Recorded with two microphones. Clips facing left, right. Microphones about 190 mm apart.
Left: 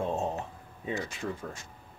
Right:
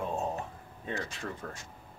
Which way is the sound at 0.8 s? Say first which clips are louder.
Left 3 dB; 10° left (ahead or behind).